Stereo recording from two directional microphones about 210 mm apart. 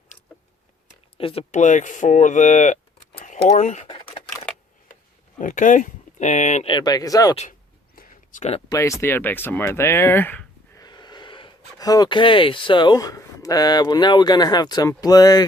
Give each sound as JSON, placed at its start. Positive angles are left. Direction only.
{"t": 1.2, "sound": "speech", "side_deg": 30}
{"t": 5.4, "sound": "speech", "side_deg": 40}
{"t": 7.9, "sound": "a sound", "side_deg": 40}
{"t": 8.7, "sound": "speech", "side_deg": 15}
{"t": 10.8, "sound": "speech", "side_deg": 20}